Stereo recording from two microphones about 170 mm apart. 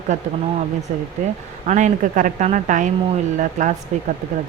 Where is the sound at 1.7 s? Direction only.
45° right (ahead or behind).